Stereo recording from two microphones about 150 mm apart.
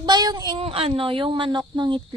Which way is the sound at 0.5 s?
40° right (ahead or behind).